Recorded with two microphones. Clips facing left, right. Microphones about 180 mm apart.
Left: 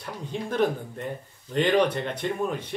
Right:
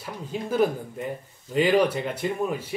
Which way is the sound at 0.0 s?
5° right (ahead or behind).